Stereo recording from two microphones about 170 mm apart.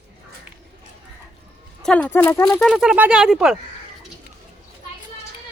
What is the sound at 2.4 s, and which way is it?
Speech, 5° left (ahead or behind).